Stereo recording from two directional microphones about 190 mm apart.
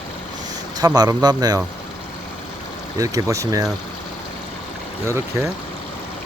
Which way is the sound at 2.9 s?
15° right (ahead or behind).